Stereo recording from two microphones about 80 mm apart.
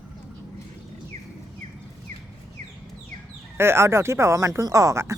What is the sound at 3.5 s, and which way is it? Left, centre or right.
Speech, right.